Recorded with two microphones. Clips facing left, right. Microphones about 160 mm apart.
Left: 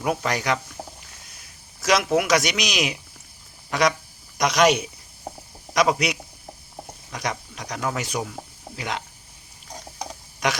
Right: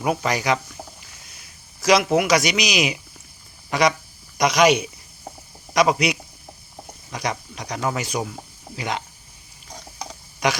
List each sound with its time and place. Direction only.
0.0 s speech: 5° right (ahead or behind)
1.8 s speech: centre (ahead or behind)
10.4 s speech: centre (ahead or behind)